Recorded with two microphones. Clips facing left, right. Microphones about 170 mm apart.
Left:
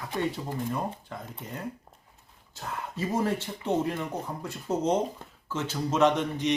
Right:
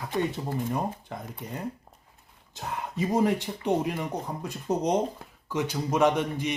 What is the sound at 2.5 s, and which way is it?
Speech, 15° right (ahead or behind).